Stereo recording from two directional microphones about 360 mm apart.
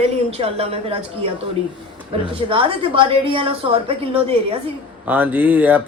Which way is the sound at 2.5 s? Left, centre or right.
Centre.